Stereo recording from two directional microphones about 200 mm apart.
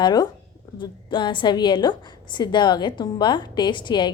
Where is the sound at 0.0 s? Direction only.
20° left (ahead or behind).